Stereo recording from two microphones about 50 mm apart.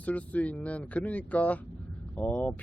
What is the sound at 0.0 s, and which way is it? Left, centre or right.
Speech, left.